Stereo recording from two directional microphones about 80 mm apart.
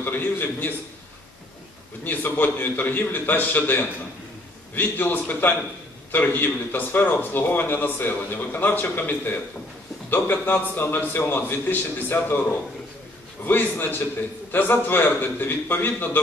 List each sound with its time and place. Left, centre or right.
0.0 s a man's voice: left
2.0 s a man's voice: left
13.5 s a man's voice: left